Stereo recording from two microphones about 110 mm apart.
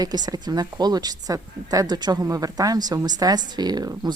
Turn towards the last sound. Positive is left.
turn(degrees=-40)  # may be behind; listen again after turning